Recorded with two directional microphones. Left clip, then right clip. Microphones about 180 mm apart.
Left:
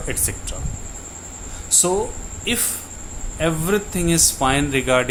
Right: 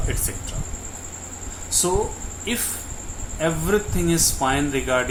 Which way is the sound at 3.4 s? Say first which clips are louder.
Left 1 dB; 35° left (ahead or behind).